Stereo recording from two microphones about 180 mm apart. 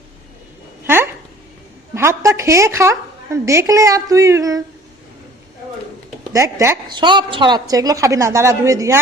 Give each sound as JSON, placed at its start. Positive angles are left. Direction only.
{"t": 0.9, "sound": "a sound", "side_deg": -10}
{"t": 2.0, "sound": "a woman's voice", "side_deg": -15}
{"t": 6.3, "sound": "a woman's voice", "side_deg": -15}